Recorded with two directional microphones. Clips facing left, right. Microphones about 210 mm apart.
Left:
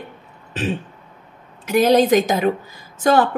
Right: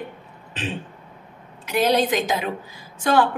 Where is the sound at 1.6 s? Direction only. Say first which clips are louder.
Left 6 dB; 45° left (ahead or behind).